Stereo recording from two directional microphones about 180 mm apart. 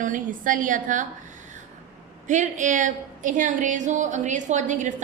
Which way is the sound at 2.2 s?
45° right (ahead or behind).